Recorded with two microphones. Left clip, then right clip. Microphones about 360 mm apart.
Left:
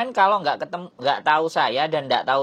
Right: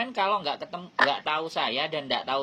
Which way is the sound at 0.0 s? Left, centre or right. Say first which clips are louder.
Left 8 dB; left.